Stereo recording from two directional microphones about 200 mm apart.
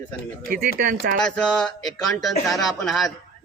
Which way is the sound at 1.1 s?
5° left (ahead or behind).